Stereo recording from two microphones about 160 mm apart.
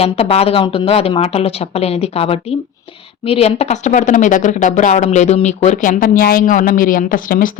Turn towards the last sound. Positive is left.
turn(degrees=60)  # may be behind; listen again after turning